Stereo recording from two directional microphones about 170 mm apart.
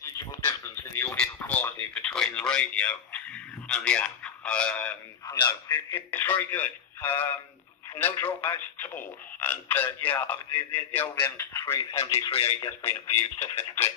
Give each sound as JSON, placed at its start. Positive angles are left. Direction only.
{"t": 0.0, "sound": "a sound", "side_deg": 10}
{"t": 3.6, "sound": "speech", "side_deg": 5}
{"t": 5.2, "sound": "a man's voice", "side_deg": 20}
{"t": 12.3, "sound": "speech", "side_deg": 35}
{"t": 12.5, "sound": "speech", "side_deg": 15}